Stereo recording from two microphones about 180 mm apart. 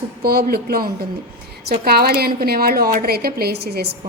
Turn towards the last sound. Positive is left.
turn(degrees=-60)  # may be behind; listen again after turning